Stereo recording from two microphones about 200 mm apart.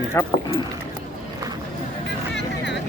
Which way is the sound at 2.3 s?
60° left (ahead or behind).